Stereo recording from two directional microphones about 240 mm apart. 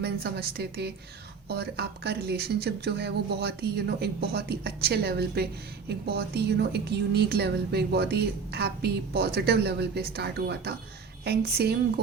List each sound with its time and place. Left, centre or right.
0.0 s a woman's voice: right